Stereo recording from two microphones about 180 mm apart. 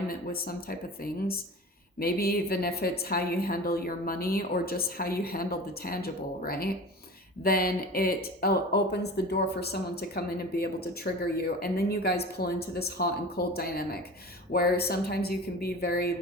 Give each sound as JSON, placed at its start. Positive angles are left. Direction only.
{"t": 0.1, "sound": "speech", "side_deg": 55}